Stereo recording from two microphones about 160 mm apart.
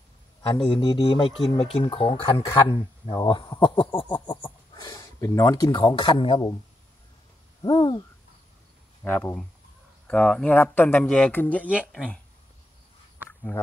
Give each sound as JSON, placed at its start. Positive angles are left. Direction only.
{"t": 0.6, "sound": "speech", "side_deg": 25}
{"t": 7.6, "sound": "speech", "side_deg": 30}
{"t": 9.0, "sound": "speech", "side_deg": 10}
{"t": 13.5, "sound": "speech", "side_deg": 15}